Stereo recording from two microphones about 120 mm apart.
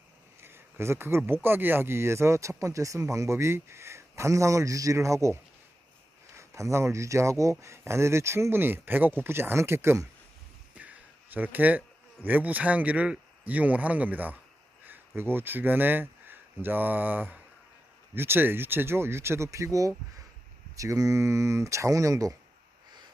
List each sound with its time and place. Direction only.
0.4 s speech: 20° right (ahead or behind)
10.8 s a sound: 15° right (ahead or behind)
12.2 s speech: 15° right (ahead or behind)